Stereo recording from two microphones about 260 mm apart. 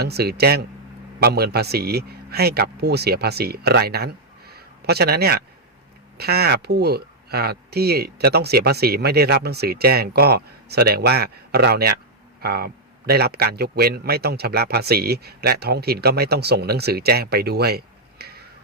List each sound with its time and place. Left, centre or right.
0.0 s a man's voice: right